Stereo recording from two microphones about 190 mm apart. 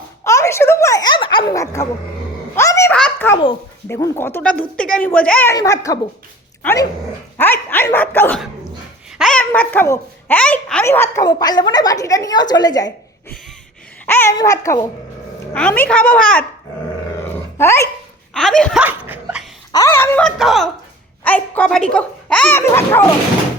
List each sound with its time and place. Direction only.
0.3 s speech: 15° left (ahead or behind)
2.6 s a sound: 15° left (ahead or behind)
3.8 s speech: 15° left (ahead or behind)
5.5 s a child's voice: 15° left (ahead or behind)
17.6 s speech: 15° left (ahead or behind)
18.3 s speech: 5° left (ahead or behind)
18.8 s laughter: 10° right (ahead or behind)
19.7 s speech: 15° left (ahead or behind)